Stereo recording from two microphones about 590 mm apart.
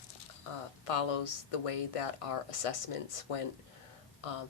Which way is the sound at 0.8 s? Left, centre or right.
Left.